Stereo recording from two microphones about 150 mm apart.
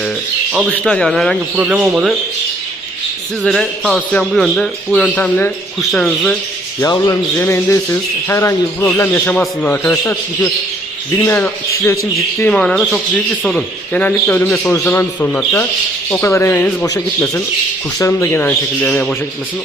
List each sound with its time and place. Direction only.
0.7 s a man's voice: 5° left (ahead or behind)
1.5 s speech: 5° right (ahead or behind)
3.4 s a man's voice: 5° left (ahead or behind)
6.7 s a man's voice: 25° left (ahead or behind); by 19.1 s 10° left (ahead or behind)